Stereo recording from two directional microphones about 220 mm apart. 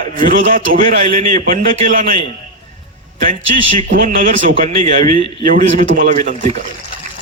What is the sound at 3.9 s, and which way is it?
Speech, 40° right (ahead or behind).